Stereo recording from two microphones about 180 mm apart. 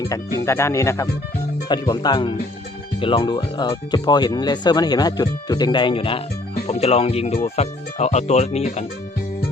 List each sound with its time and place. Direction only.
0.0 s speech: 15° left (ahead or behind); by 8.9 s 35° left (ahead or behind)